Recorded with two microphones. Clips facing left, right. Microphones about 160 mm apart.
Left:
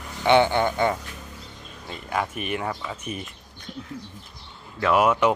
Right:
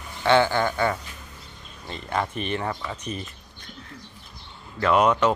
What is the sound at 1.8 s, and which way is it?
Speech, 5° left (ahead or behind).